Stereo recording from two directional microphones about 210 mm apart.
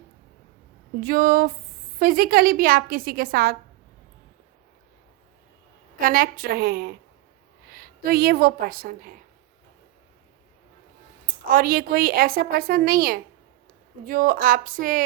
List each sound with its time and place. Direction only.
1.0 s a woman's voice: 45° right (ahead or behind)
6.0 s a woman's voice: 40° right (ahead or behind)
11.4 s a woman's voice: 45° right (ahead or behind)